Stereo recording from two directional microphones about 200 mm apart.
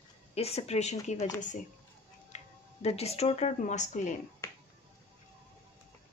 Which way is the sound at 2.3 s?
30° left (ahead or behind).